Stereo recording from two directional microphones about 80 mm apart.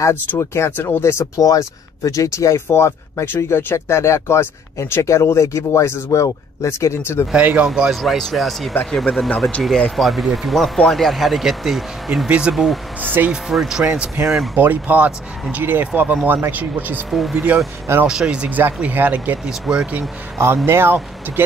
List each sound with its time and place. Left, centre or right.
0.1 s speech: left
1.4 s speech: left
7.3 s speech: centre
8.0 s speech: centre
12.3 s speech: centre
13.0 s speech: right
13.3 s speech: centre
14.5 s speech: right
17.1 s speech: centre
20.6 s speech: right